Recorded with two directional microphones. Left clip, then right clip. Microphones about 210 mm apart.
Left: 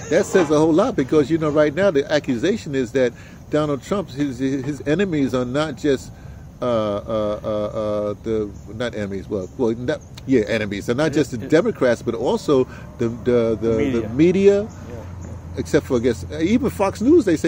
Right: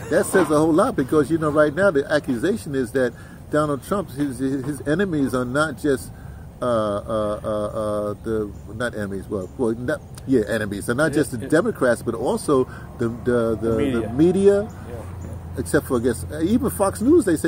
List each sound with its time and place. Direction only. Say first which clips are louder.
0.3 s speech: left 1 dB; 20° left (ahead or behind)
15.7 s speech: left 2 dB; 20° left (ahead or behind)